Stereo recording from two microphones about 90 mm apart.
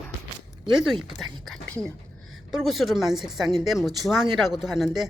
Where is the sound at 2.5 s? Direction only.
Centre (ahead or behind).